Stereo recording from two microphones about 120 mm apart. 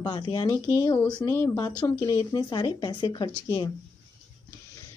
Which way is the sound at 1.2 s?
20° left (ahead or behind).